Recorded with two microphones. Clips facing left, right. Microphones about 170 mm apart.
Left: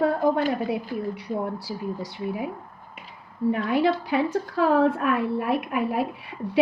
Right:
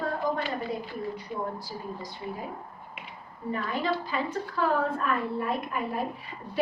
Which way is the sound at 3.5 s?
75° left (ahead or behind).